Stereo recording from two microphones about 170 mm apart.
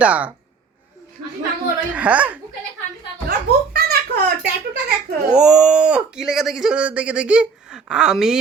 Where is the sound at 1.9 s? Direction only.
10° right (ahead or behind).